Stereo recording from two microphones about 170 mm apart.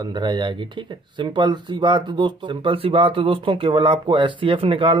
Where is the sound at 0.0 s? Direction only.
25° right (ahead or behind).